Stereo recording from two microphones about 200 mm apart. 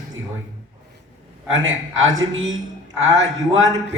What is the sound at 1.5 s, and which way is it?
A woman's voice, 75° right (ahead or behind).